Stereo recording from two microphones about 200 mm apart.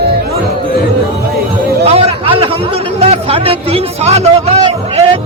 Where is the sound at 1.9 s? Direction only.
30° right (ahead or behind).